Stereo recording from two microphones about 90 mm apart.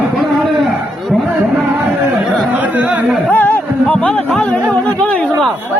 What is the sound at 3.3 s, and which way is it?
Music, 15° left (ahead or behind).